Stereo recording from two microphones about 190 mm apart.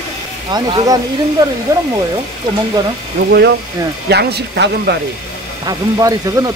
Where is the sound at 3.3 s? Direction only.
60° right (ahead or behind).